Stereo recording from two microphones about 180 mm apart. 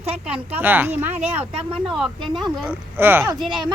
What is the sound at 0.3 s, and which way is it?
Speech, 10° right (ahead or behind).